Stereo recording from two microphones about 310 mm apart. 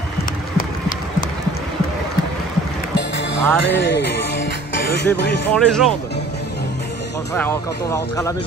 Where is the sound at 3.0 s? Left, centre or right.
Left.